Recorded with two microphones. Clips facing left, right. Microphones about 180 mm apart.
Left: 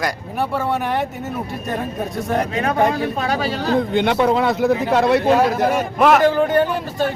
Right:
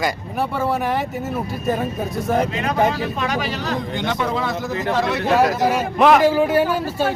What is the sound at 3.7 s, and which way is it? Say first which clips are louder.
Speech: left 9 dB; 60° left (ahead or behind).